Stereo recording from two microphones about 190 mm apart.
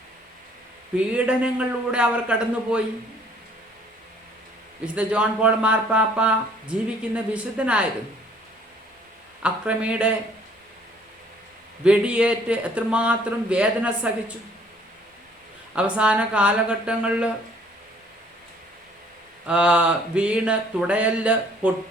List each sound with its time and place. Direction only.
0.9 s speech: 5° right (ahead or behind)
4.9 s speech: 5° right (ahead or behind)
9.4 s speech: 5° right (ahead or behind)
11.9 s speech: 5° right (ahead or behind)
15.7 s speech: 5° right (ahead or behind)
19.5 s speech: 5° right (ahead or behind)